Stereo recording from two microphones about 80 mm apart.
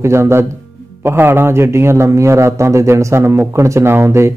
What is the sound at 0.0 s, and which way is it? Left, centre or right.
A man's voice, right.